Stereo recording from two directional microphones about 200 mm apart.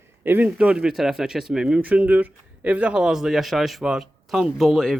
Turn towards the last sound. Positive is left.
turn(degrees=0)  # may be behind; listen again after turning